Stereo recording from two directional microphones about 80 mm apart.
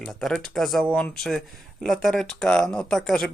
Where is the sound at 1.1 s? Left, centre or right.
Centre.